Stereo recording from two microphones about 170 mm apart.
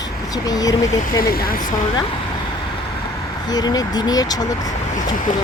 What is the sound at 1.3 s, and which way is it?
Speech, 60° left (ahead or behind).